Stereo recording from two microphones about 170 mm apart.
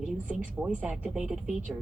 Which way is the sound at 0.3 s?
5° right (ahead or behind).